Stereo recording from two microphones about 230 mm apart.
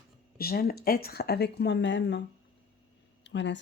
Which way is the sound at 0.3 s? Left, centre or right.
Left.